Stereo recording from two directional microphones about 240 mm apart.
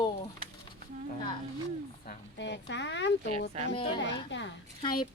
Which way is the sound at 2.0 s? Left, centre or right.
Left.